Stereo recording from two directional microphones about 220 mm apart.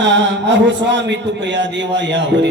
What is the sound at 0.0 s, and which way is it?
A man's voice, 50° right (ahead or behind).